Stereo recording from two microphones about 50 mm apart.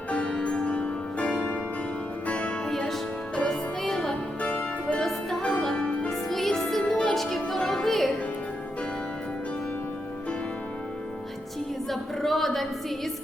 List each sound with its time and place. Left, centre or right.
0.1 s music: centre
0.6 s music: left
2.6 s music: centre
4.4 s music: left
4.9 s music: centre
5.4 s music: left
6.1 s music: centre
11.9 s a sound: centre